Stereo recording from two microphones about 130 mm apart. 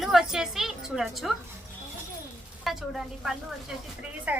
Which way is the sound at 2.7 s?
Centre (ahead or behind).